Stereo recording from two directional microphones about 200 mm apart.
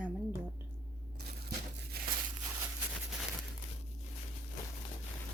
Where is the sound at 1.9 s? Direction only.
50° right (ahead or behind).